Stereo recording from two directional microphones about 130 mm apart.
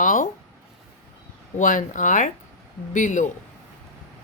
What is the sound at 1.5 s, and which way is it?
A woman's voice, 75° left (ahead or behind).